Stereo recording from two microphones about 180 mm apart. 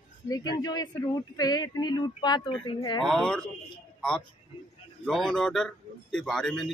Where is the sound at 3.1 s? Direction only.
5° left (ahead or behind).